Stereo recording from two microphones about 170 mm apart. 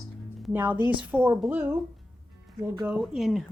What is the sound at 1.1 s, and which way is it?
Speech, 10° right (ahead or behind).